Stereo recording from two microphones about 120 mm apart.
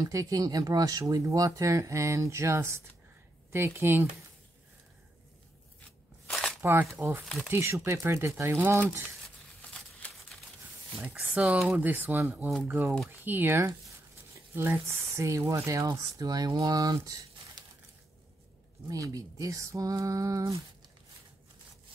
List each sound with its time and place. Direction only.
0.0 s speech: 30° right (ahead or behind)
6.2 s shuffling cards: 10° left (ahead or behind)
6.6 s speech: 15° right (ahead or behind)
11.0 s speech: 15° right (ahead or behind); by 17.6 s 30° right (ahead or behind)
18.9 s speech: 30° right (ahead or behind)